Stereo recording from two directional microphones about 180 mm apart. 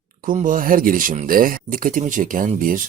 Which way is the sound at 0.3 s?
50° right (ahead or behind).